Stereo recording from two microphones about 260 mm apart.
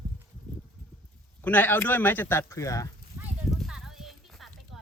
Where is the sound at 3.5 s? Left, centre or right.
Centre.